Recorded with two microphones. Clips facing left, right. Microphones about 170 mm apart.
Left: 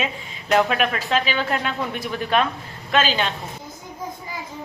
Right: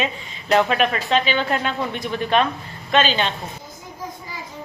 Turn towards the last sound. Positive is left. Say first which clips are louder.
# right 2 dB
turn(degrees=5)  # may be behind; listen again after turning